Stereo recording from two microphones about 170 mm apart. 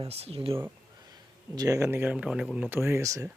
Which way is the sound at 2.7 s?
15° right (ahead or behind).